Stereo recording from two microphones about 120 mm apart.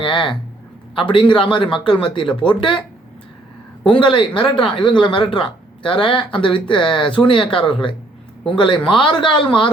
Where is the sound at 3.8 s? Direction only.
45° left (ahead or behind).